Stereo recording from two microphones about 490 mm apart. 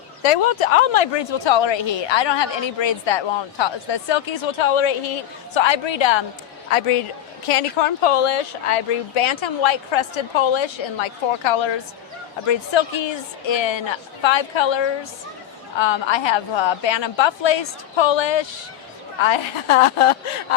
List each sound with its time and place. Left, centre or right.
0.2 s a woman's voice: left
6.7 s a man's voice: left